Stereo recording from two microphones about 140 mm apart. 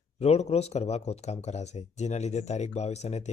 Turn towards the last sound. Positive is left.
turn(degrees=50)  # may be behind; listen again after turning